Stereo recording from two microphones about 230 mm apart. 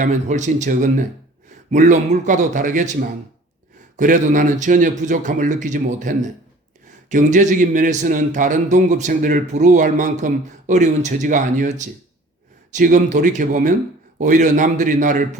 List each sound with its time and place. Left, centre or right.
0.0 s a man's voice: right